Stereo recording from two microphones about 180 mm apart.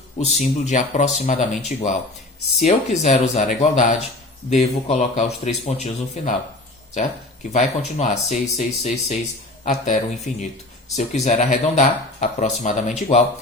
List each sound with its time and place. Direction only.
0.2 s speech: 40° left (ahead or behind)
7.5 s speech: 40° left (ahead or behind)